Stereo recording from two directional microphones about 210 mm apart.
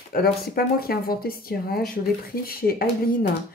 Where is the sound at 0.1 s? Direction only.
45° left (ahead or behind).